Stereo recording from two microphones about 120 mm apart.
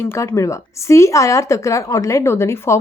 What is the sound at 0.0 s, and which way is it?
A woman's voice, 20° left (ahead or behind).